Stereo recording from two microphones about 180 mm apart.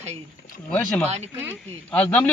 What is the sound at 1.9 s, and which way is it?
Speech, 5° left (ahead or behind).